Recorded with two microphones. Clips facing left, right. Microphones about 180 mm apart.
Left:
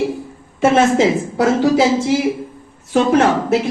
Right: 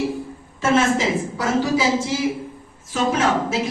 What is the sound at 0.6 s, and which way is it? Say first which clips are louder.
A woman's voice: left 6 dB; 65° left (ahead or behind).